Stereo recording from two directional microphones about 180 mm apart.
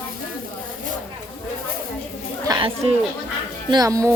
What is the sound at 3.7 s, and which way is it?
Speech, 20° right (ahead or behind).